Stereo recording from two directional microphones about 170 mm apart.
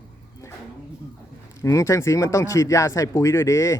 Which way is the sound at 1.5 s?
20° left (ahead or behind).